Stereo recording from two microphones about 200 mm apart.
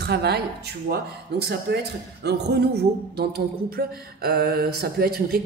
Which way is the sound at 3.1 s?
50° right (ahead or behind).